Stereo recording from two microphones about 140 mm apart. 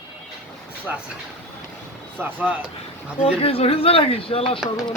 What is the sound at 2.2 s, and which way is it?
Speech, 10° right (ahead or behind).